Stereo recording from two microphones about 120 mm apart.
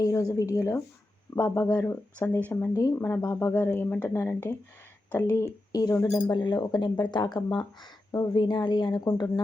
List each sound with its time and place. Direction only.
0.0 s speech: 30° left (ahead or behind)
3.3 s speech: 15° left (ahead or behind)
6.3 s speech: 40° left (ahead or behind)